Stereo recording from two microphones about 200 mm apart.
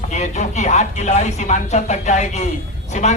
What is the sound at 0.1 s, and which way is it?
A man's voice, 35° left (ahead or behind).